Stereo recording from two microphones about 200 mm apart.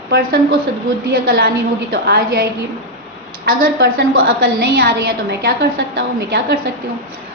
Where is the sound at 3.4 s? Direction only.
55° right (ahead or behind).